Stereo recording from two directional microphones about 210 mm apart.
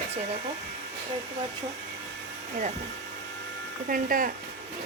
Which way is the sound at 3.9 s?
40° right (ahead or behind).